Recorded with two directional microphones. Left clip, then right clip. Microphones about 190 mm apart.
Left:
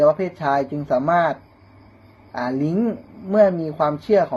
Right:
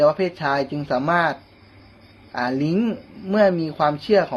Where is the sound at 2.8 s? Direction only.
20° right (ahead or behind).